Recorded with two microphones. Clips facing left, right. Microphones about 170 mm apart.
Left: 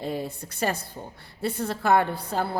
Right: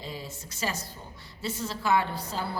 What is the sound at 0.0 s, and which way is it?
Speech, 55° left (ahead or behind).